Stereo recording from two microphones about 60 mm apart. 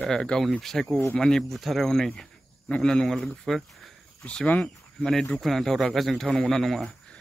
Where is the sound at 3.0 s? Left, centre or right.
Centre.